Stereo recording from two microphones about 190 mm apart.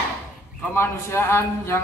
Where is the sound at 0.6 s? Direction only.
10° left (ahead or behind).